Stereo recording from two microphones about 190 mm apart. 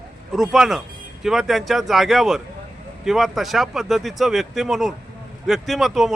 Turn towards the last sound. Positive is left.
turn(degrees=0)  # may be behind; listen again after turning